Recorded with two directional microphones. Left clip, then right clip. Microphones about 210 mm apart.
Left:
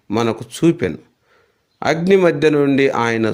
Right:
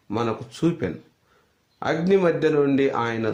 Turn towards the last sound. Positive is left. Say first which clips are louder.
# left 7 dB
turn(degrees=45)  # may be behind; listen again after turning